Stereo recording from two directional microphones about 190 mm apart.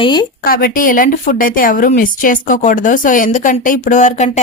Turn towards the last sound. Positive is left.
turn(degrees=40)  # may be behind; listen again after turning